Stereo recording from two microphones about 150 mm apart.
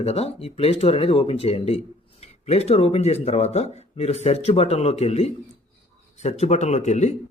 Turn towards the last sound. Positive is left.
turn(degrees=50)  # may be behind; listen again after turning